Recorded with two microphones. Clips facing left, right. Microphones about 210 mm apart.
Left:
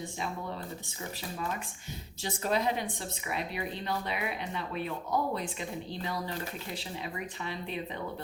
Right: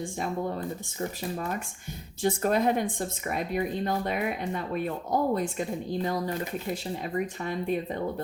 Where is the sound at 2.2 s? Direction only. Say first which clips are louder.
Right 6 dB; 50° right (ahead or behind).